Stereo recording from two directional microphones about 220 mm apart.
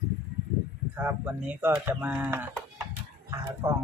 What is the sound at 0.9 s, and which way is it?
Speech, 10° right (ahead or behind).